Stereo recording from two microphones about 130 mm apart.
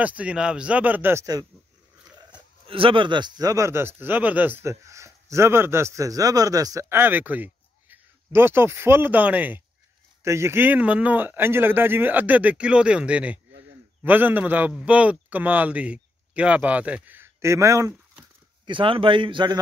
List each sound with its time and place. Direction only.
0.0 s speech: 10° right (ahead or behind)
2.6 s speech: 45° right (ahead or behind); by 17.9 s 25° right (ahead or behind)
18.7 s a man's voice: 40° right (ahead or behind)